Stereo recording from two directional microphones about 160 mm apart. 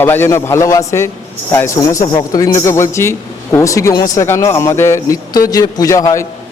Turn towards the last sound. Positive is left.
turn(degrees=20)  # may be behind; listen again after turning